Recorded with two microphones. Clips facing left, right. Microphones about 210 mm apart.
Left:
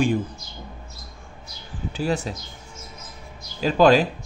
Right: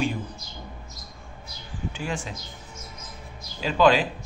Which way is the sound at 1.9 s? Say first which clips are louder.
Left 7 dB; 40° left (ahead or behind).